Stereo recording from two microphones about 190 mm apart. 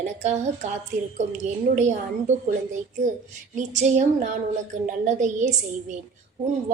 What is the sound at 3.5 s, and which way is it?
A woman's voice, 40° right (ahead or behind).